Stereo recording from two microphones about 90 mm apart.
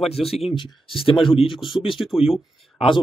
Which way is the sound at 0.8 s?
85° left.